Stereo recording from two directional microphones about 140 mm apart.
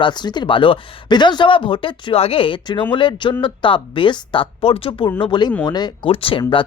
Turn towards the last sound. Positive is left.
turn(degrees=40)  # may be behind; listen again after turning